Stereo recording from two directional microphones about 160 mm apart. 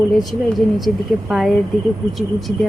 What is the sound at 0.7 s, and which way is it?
A woman's voice, centre (ahead or behind).